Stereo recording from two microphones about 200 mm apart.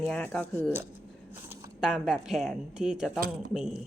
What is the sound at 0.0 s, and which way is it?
A woman's voice, 5° left (ahead or behind).